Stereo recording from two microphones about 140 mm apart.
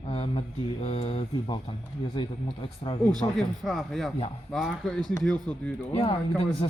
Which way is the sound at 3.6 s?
Centre (ahead or behind).